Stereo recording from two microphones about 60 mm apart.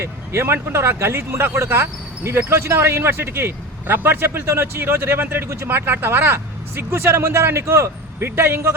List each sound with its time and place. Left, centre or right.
0.0 s speech: right